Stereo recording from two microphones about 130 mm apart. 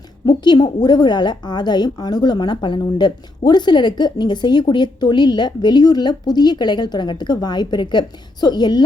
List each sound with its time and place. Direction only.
0.3 s a woman's voice: 35° left (ahead or behind)